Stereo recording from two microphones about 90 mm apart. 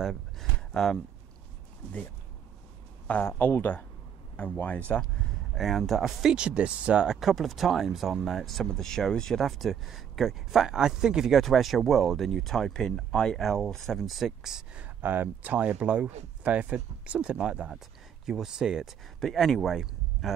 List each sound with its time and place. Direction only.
0.0 s a sound: centre (ahead or behind)
3.3 s speech: 25° left (ahead or behind)
5.5 s speech: centre (ahead or behind)
15.0 s speech: 20° right (ahead or behind); by 20.3 s 5° right (ahead or behind)